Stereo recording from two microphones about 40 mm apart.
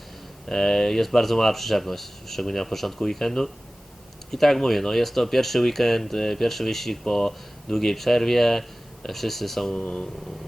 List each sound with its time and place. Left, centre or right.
0.4 s speech: centre
9.7 s speech: left